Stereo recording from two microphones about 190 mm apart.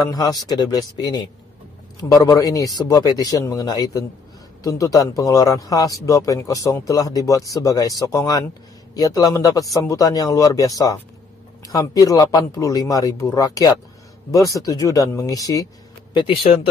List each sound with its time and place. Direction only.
0.1 s a man's voice: 20° left (ahead or behind)